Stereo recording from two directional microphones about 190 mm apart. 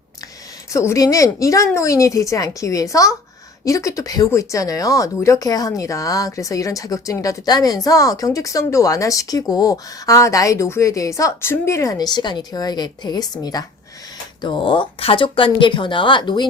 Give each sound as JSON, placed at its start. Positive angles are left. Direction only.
{"t": 0.7, "sound": "speech", "side_deg": 15}